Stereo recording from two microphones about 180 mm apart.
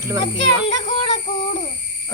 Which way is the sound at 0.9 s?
35° left (ahead or behind).